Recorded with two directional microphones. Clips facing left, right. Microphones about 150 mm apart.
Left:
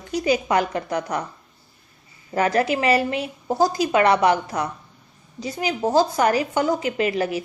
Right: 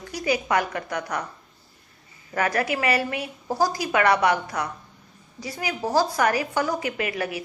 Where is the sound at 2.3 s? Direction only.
25° left (ahead or behind).